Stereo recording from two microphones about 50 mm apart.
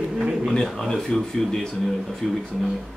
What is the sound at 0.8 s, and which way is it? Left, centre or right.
Speech, centre.